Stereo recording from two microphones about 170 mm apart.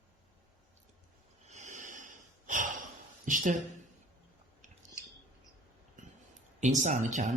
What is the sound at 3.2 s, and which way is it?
Speech, 50° right (ahead or behind).